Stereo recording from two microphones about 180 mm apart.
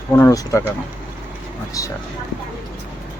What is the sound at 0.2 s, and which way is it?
Speech, 15° left (ahead or behind).